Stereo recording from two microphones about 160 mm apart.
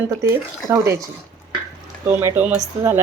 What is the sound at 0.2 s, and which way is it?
Speech, 15° right (ahead or behind).